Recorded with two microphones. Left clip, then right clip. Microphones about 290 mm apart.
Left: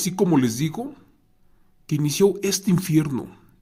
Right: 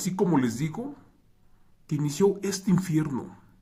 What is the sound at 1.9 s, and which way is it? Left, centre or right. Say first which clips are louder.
Speech: left 5 dB; left.